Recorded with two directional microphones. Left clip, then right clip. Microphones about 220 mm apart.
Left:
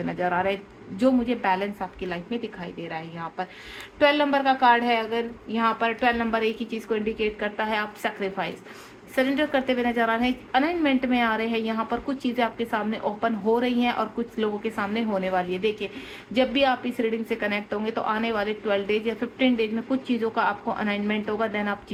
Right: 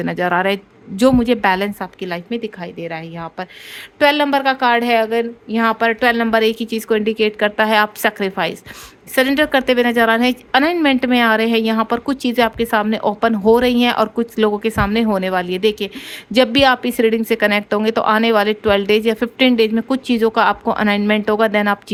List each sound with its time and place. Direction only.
0.0 s a woman's voice: 50° right (ahead or behind)